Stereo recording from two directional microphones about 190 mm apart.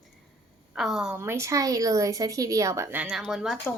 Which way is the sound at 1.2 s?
15° right (ahead or behind).